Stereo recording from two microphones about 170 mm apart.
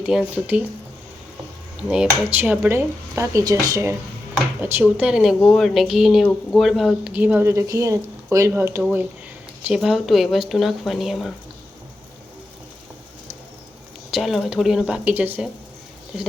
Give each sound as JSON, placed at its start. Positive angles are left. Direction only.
{"t": 0.0, "sound": "speech", "side_deg": -5}
{"t": 1.9, "sound": "speech", "side_deg": -5}
{"t": 9.6, "sound": "speech", "side_deg": 0}
{"t": 14.1, "sound": "speech", "side_deg": 0}